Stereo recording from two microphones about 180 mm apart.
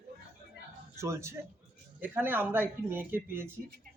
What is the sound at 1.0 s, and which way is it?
A man's voice, 15° right (ahead or behind).